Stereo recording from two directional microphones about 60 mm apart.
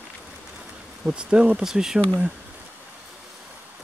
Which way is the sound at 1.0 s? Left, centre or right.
Centre.